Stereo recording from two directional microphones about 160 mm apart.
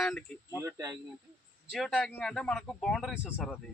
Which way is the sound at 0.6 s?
20° right (ahead or behind).